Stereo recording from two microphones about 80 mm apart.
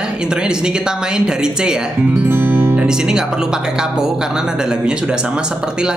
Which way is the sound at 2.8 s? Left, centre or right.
Centre.